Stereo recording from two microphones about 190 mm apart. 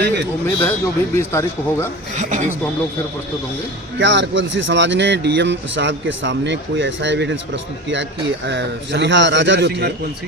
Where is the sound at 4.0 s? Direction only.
70° right (ahead or behind).